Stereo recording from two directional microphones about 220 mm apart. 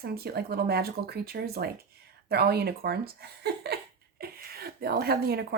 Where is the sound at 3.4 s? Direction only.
45° right (ahead or behind).